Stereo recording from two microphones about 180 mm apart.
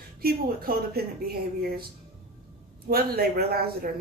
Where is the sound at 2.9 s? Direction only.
60° right (ahead or behind).